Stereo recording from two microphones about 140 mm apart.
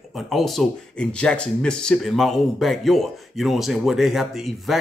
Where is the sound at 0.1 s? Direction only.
Centre (ahead or behind).